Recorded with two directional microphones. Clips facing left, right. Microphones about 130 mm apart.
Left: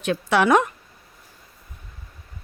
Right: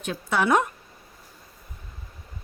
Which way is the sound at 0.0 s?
80° left.